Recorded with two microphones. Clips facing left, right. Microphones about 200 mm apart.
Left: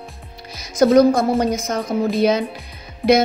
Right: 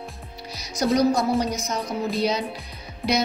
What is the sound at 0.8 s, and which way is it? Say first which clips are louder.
A woman's voice: left 8 dB; 50° left (ahead or behind).